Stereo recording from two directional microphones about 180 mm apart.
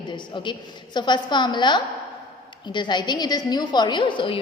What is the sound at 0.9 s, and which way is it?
A woman's voice, 25° left (ahead or behind).